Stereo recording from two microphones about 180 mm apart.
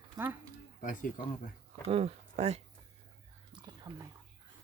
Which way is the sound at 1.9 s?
35° right (ahead or behind).